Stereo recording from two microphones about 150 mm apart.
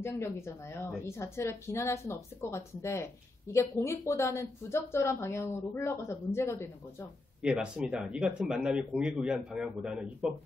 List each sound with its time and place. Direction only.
0.0 s speech: 15° left (ahead or behind)
7.4 s speech: 5° right (ahead or behind)